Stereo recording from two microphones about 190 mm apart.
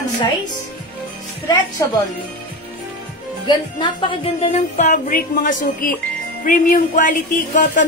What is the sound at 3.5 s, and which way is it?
Speech, 25° left (ahead or behind).